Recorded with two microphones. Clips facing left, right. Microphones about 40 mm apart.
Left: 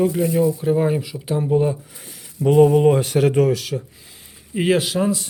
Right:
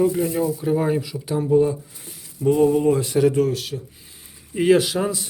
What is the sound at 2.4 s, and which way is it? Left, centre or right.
Speech, left.